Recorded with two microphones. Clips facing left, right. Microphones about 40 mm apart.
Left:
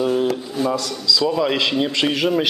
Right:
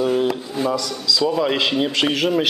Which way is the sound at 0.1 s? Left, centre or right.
Centre.